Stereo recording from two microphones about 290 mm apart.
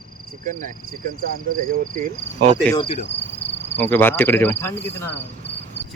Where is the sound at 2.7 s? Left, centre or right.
Centre.